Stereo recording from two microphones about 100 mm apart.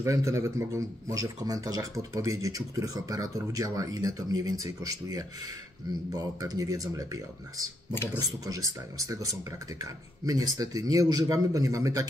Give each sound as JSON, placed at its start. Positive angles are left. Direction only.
{"t": 0.0, "sound": "a man's voice", "side_deg": -30}
{"t": 7.9, "sound": "speech", "side_deg": 20}
{"t": 8.2, "sound": "a man's voice", "side_deg": -35}